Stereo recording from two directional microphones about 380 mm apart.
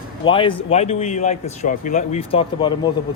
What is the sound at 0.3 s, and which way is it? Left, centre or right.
Speech, centre.